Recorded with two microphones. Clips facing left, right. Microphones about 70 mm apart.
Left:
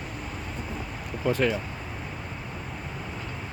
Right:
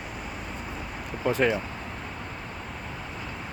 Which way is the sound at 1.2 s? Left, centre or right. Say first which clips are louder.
Right 1 dB; centre.